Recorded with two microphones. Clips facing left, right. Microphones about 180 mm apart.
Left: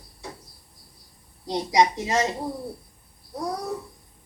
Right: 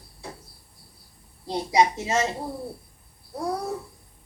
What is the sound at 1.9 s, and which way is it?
Speech, 25° right (ahead or behind).